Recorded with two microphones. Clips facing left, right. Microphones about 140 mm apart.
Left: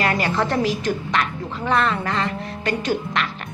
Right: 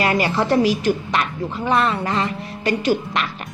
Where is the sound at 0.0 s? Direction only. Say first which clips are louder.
Right 2 dB; 15° right (ahead or behind).